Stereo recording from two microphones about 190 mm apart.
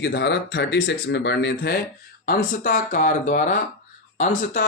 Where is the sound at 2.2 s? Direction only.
50° left (ahead or behind).